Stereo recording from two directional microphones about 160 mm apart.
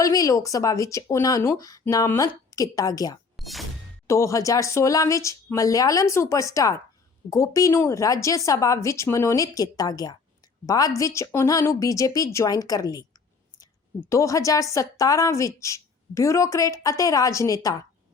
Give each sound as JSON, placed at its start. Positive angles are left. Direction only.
{"t": 0.0, "sound": "a woman's voice", "side_deg": 20}
{"t": 3.3, "sound": "speech", "side_deg": 0}
{"t": 4.0, "sound": "a woman's voice", "side_deg": 20}